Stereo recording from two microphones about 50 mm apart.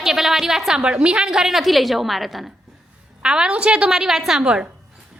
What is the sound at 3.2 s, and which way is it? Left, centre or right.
Speech, centre.